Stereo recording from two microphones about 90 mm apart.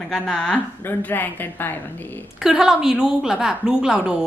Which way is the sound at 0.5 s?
20° left (ahead or behind).